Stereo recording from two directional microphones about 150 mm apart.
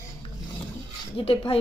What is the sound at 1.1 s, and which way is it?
Speech, 35° left (ahead or behind).